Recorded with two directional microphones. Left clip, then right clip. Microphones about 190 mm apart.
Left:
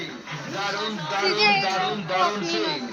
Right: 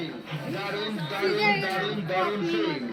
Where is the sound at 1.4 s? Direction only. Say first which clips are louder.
Left 5 dB; 45° right (ahead or behind).